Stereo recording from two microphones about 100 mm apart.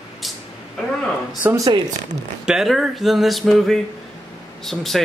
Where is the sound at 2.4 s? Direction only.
5° right (ahead or behind).